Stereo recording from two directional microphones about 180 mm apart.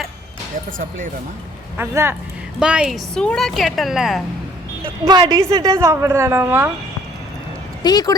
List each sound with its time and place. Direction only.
0.8 s speech: 45° right (ahead or behind)
1.7 s a woman's voice: 15° right (ahead or behind)
5.0 s a woman's voice: 25° right (ahead or behind)
7.9 s speech: 20° left (ahead or behind)